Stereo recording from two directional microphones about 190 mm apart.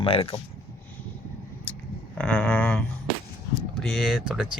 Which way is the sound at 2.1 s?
5° left (ahead or behind).